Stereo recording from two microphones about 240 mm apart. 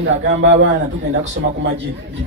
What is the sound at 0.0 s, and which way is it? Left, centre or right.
Speech, right.